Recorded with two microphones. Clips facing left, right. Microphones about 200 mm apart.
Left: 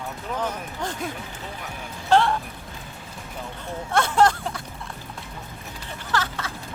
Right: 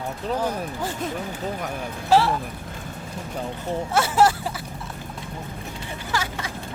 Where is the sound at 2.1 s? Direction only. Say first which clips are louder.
Even; 5° right (ahead or behind).